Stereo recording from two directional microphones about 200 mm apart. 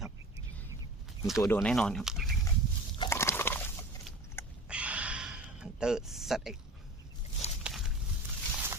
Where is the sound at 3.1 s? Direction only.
15° left (ahead or behind).